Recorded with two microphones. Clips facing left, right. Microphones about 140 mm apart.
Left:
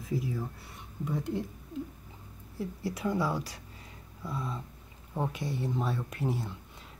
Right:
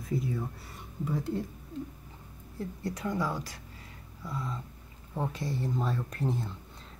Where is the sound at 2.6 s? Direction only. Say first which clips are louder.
Left 2 dB; 10° left (ahead or behind).